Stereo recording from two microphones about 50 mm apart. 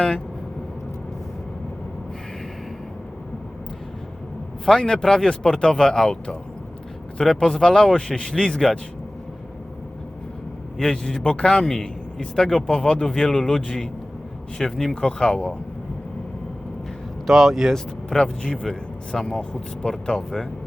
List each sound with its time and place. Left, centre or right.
4.6 s a man's voice: centre
10.8 s a man's voice: centre
17.2 s speech: centre
18.1 s a man's voice: centre